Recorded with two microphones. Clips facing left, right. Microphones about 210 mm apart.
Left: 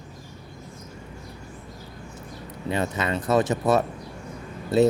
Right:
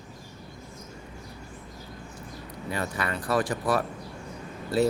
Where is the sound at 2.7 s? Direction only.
20° left (ahead or behind).